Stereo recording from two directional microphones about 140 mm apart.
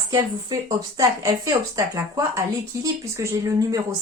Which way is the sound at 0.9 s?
25° right (ahead or behind).